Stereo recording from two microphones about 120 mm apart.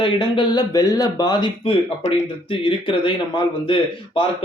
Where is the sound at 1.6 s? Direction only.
50° left (ahead or behind).